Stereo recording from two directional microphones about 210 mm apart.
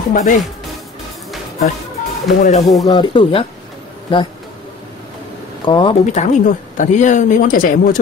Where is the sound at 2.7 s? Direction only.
20° left (ahead or behind).